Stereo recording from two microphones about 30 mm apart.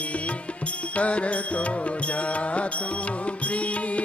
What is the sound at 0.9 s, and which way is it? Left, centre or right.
Music, left.